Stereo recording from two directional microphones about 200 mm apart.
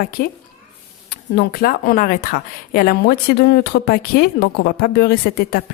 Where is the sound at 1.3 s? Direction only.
50° left (ahead or behind).